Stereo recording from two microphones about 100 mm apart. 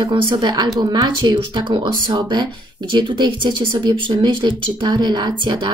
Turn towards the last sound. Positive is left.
turn(degrees=-55)  # may be behind; listen again after turning